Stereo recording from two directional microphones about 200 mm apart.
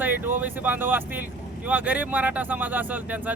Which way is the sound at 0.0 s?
10° right (ahead or behind).